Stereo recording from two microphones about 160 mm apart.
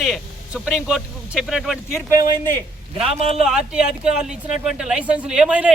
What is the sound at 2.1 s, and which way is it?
Speech, 25° right (ahead or behind).